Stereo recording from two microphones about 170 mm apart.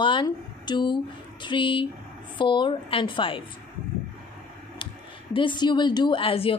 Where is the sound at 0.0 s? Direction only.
25° left (ahead or behind).